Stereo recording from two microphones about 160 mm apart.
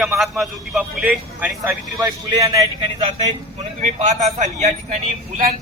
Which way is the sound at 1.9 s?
20° right (ahead or behind).